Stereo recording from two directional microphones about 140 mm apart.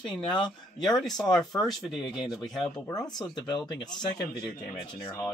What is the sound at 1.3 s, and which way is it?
Speech, 5° left (ahead or behind).